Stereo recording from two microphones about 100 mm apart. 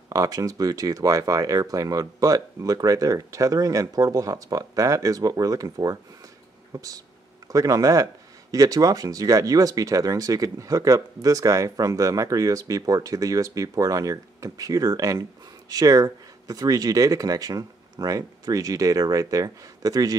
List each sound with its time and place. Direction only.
0.1 s speech: 35° right (ahead or behind)